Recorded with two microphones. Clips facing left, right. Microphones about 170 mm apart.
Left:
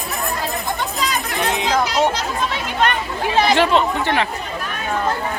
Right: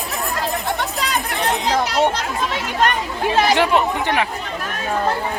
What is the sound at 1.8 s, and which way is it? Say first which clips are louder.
Speech: even; 60° right (ahead or behind).